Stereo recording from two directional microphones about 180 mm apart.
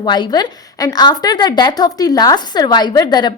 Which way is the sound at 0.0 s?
25° left (ahead or behind).